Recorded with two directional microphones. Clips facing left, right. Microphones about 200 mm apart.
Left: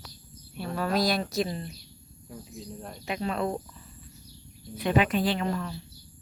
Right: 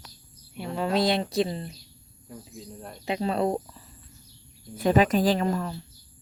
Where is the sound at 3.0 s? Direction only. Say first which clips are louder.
Right 4 dB; 30° right (ahead or behind).